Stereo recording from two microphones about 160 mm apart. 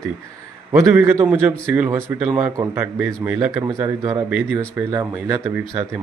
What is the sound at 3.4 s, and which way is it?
A man's voice, 20° right (ahead or behind).